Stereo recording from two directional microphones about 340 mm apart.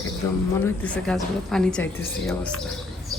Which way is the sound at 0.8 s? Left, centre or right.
Centre.